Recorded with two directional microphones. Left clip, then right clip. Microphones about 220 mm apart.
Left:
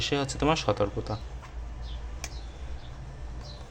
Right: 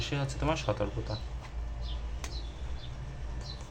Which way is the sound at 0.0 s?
40° left (ahead or behind).